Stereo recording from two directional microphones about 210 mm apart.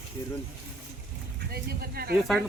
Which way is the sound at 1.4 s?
45° right (ahead or behind).